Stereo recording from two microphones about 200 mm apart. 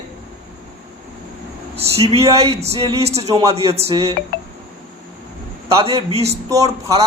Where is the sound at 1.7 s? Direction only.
30° right (ahead or behind).